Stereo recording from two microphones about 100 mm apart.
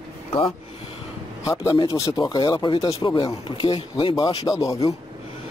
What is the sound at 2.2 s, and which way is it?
Speech, 45° left (ahead or behind).